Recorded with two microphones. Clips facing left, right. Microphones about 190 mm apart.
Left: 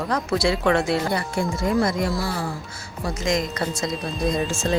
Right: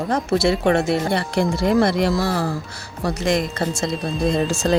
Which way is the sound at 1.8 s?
75° right (ahead or behind).